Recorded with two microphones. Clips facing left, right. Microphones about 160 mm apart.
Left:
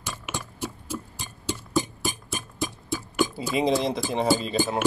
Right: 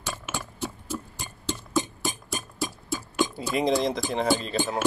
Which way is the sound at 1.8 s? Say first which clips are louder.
Left 1 dB; 25° right (ahead or behind).